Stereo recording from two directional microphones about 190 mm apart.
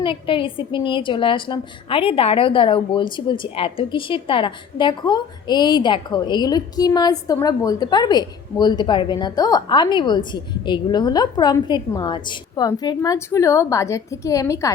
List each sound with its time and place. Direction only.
0.0 s a woman's voice: 25° left (ahead or behind)